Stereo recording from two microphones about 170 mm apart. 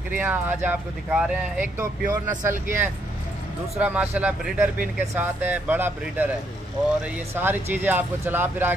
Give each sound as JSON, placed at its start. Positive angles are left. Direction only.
{"t": 0.1, "sound": "speech", "side_deg": -10}
{"t": 3.7, "sound": "speech", "side_deg": -10}
{"t": 7.3, "sound": "speech", "side_deg": -10}